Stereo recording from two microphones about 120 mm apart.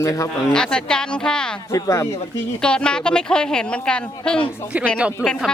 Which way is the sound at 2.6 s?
10° left (ahead or behind).